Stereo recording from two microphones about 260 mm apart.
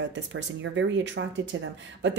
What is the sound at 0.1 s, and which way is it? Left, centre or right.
A woman's voice, right.